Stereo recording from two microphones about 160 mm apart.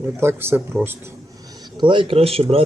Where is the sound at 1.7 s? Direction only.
30° right (ahead or behind).